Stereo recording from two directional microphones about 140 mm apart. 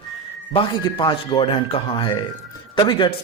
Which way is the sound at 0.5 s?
35° left (ahead or behind).